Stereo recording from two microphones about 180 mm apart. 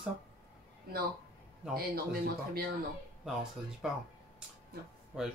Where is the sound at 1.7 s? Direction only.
60° right (ahead or behind).